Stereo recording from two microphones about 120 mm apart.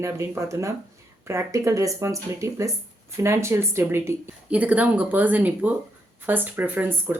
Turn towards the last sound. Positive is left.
turn(degrees=-15)  # may be behind; listen again after turning